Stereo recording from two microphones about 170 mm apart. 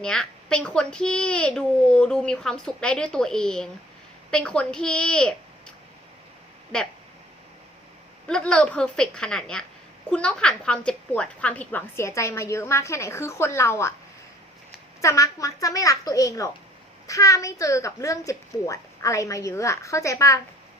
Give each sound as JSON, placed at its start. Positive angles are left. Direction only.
{"t": 0.0, "sound": "a child's voice", "side_deg": 5}
{"t": 8.3, "sound": "a child's voice", "side_deg": 5}
{"t": 15.0, "sound": "a woman's voice", "side_deg": 20}